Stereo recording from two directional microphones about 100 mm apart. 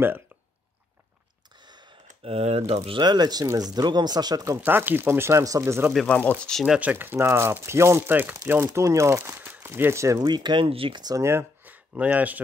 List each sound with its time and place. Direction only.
1.6 s a sound: 45° right (ahead or behind)
2.2 s speech: 90° right
3.0 s speech: 45° right (ahead or behind)
4.6 s speech: 20° right (ahead or behind)
5.6 s speech: 20° right (ahead or behind)
6.0 s speech: 15° left (ahead or behind)
6.7 s speech: 15° right (ahead or behind); by 10.2 s 30° right (ahead or behind)
10.2 s speech: 45° right (ahead or behind)
10.7 s speech: 65° right (ahead or behind)
11.0 s speech: 40° right (ahead or behind)
11.2 s speech: 20° right (ahead or behind)